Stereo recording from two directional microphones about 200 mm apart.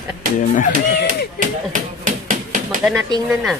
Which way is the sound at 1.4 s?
40° right (ahead or behind).